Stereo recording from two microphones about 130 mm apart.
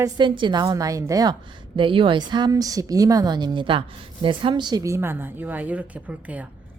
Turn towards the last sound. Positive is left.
turn(degrees=-10)  # may be behind; listen again after turning